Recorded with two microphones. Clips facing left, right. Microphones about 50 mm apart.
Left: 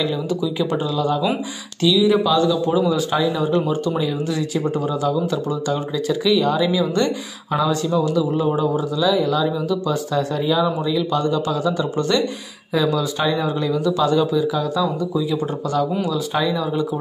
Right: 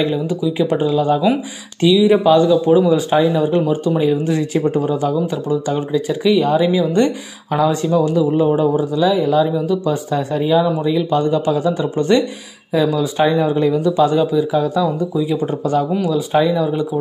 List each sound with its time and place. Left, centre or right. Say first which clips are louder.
0.0 s speech: right 4 dB; right
3.5 s speech: right 3 dB; centre
4.0 s speech: right 6 dB; right; by 13.0 s centre
13.2 s speech: right 9 dB; right
16.1 s speech: right 5 dB; right